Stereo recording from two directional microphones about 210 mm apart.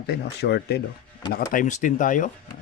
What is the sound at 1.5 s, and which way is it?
Speech, 35° left (ahead or behind).